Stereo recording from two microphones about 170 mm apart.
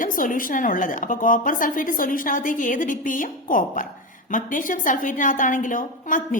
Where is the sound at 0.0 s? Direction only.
55° left (ahead or behind).